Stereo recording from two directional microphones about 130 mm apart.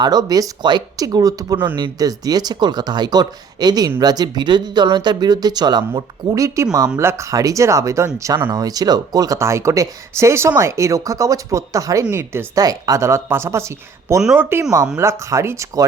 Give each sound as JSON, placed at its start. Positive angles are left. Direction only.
{"t": 0.0, "sound": "speech", "side_deg": -30}